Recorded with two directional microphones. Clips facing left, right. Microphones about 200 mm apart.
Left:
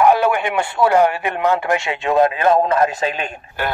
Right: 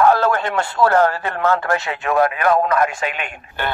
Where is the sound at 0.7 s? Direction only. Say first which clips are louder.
Left 1 dB; 15° left (ahead or behind).